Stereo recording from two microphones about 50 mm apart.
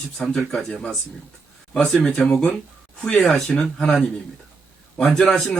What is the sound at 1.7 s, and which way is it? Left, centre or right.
Speech, left.